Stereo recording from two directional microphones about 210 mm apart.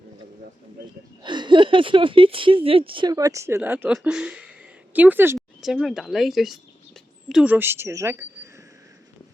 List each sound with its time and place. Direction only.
1.2 s speech: 20° right (ahead or behind); by 4.5 s 5° right (ahead or behind)
4.9 s a sound: 10° right (ahead or behind)
5.7 s speech: centre (ahead or behind)